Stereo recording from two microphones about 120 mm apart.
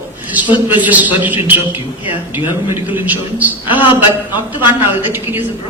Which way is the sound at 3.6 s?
45° left (ahead or behind).